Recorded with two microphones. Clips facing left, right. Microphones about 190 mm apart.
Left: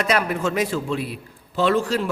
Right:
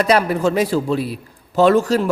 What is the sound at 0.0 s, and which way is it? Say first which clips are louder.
A man's voice: right 6 dB; 35° right (ahead or behind).